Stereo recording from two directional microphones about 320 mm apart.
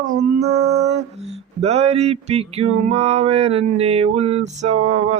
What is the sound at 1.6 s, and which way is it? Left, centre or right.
Male singing, centre.